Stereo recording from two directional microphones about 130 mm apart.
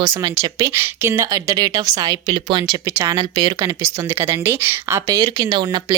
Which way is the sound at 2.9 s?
20° right (ahead or behind).